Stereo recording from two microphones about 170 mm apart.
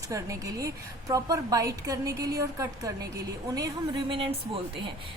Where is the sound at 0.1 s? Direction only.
20° right (ahead or behind).